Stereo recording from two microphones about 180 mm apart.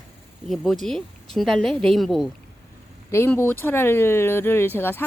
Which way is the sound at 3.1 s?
15° left (ahead or behind).